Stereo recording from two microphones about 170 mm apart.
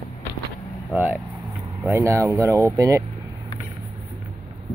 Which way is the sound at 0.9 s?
10° right (ahead or behind).